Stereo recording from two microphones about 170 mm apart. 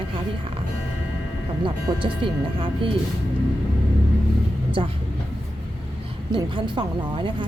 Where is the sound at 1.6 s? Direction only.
30° right (ahead or behind).